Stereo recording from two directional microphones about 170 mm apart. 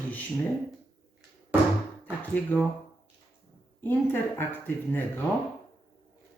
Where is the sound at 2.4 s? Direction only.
10° left (ahead or behind).